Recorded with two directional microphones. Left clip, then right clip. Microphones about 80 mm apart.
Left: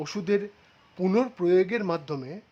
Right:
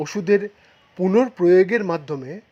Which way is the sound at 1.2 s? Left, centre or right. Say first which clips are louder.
Right 8 dB; right.